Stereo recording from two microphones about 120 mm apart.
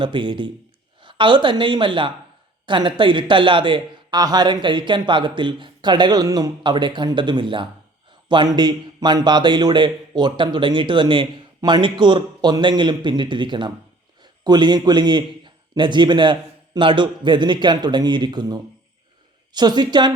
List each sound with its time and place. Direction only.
0.0 s a man's voice: 40° right (ahead or behind)